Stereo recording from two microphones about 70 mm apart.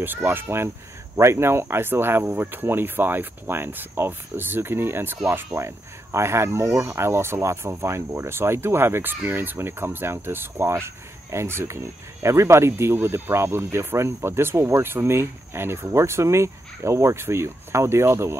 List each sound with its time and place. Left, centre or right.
0.0 s speech: right
1.1 s speech: right